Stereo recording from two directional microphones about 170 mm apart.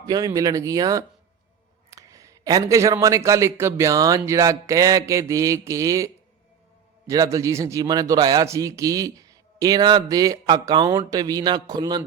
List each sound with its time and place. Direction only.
0.0 s a man's voice: 20° right (ahead or behind)
7.1 s a man's voice: 20° right (ahead or behind)